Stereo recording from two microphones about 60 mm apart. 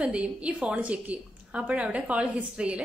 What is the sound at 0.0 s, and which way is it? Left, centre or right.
A woman's voice, centre.